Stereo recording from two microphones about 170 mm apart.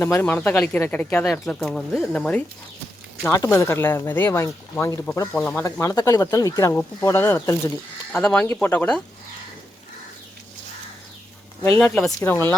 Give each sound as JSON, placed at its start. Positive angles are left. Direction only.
{"t": 0.0, "sound": "speech", "side_deg": 15}
{"t": 5.4, "sound": "speech", "side_deg": 5}
{"t": 5.8, "sound": "speech", "side_deg": 20}
{"t": 11.8, "sound": "speech", "side_deg": 5}